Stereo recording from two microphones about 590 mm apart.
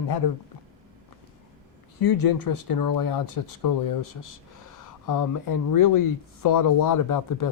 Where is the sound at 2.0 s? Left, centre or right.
Left.